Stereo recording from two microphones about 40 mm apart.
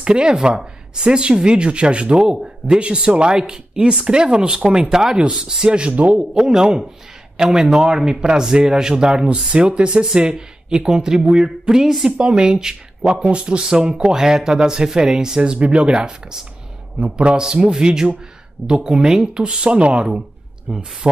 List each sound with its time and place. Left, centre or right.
0.0 s speech: right
17.0 s speech: right
17.4 s speech: centre
20.7 s speech: centre